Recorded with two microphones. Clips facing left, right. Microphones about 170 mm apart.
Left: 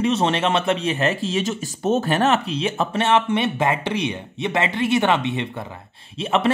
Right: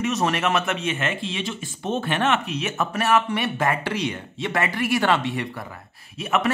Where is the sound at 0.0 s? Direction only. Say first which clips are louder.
Left 3 dB; 30° left (ahead or behind).